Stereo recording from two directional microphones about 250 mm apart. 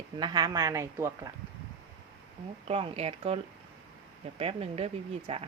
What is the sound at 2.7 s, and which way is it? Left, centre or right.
Speech, right.